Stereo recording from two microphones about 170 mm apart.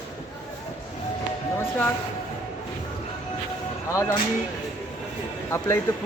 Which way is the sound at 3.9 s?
15° left (ahead or behind).